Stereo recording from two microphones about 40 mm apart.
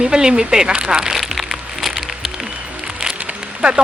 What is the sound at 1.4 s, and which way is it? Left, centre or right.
Music, centre.